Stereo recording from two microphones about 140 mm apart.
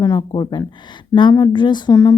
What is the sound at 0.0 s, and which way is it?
Speech, 30° left (ahead or behind).